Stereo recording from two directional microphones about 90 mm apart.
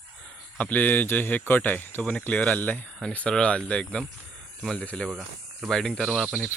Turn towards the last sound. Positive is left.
turn(degrees=0)  # may be behind; listen again after turning